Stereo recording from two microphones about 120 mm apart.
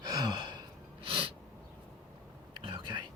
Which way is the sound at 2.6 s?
40° right (ahead or behind).